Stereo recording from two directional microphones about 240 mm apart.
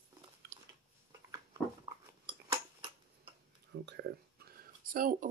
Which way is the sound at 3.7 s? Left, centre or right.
Right.